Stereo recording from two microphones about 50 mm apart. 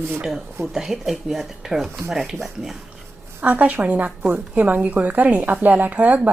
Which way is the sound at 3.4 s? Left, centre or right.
Right.